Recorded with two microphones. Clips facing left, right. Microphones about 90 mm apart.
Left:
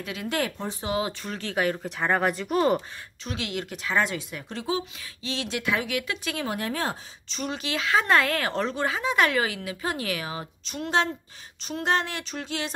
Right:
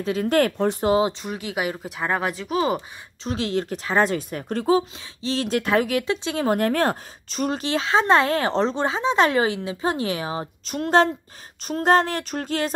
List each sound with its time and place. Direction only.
0.0 s speech: 40° right (ahead or behind)
0.6 s speech: 65° right (ahead or behind)
1.0 s speech: 20° right (ahead or behind); by 2.8 s centre (ahead or behind)
3.3 s speech: 35° right (ahead or behind)
6.5 s speech: 55° right (ahead or behind); by 10.5 s 30° right (ahead or behind)
10.6 s a sound: 45° right (ahead or behind)